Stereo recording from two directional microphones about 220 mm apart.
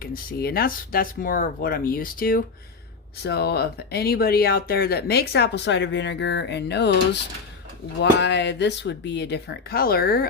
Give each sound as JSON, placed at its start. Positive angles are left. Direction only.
{"t": 0.0, "sound": "speech", "side_deg": 40}
{"t": 8.2, "sound": "speech", "side_deg": 50}